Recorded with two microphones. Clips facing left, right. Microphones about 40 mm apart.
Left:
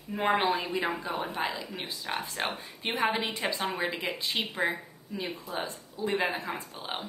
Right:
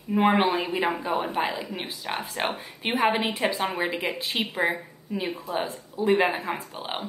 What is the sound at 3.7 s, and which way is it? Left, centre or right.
A woman's voice, centre.